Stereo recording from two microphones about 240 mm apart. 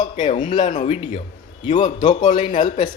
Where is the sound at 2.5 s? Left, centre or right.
Left.